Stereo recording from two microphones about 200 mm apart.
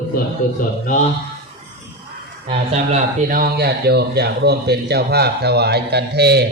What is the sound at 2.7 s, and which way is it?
Speech, 35° right (ahead or behind).